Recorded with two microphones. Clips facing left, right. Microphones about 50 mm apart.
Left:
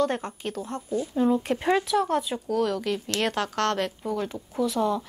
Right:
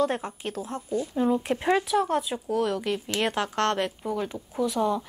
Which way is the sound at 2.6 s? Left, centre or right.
Centre.